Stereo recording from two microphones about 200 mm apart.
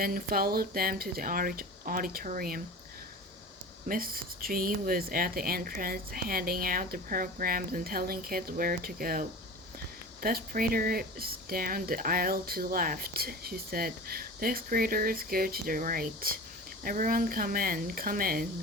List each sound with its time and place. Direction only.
0.0 s speech: 45° right (ahead or behind)
3.8 s speech: 45° right (ahead or behind)